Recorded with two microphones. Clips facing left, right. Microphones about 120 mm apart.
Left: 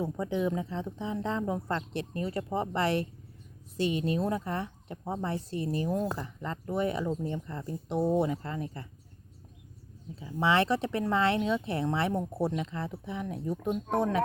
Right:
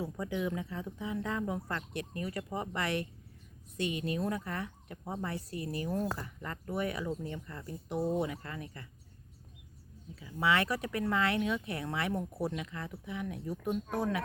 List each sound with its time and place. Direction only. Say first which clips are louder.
0.0 s speech: left 5 dB; 25° left (ahead or behind)
10.2 s speech: left 4 dB; 30° left (ahead or behind)